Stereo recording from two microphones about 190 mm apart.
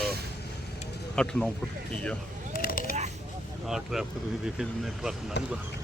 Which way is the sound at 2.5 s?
50° left (ahead or behind).